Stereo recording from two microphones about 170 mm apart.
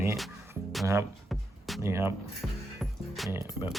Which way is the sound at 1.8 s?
15° right (ahead or behind).